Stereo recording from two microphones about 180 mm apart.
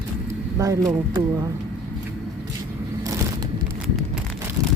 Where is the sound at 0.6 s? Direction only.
20° right (ahead or behind).